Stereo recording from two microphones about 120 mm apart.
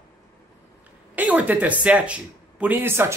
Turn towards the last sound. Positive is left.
turn(degrees=-20)  # may be behind; listen again after turning